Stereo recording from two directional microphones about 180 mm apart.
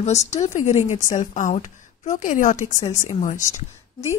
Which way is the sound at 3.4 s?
15° left (ahead or behind).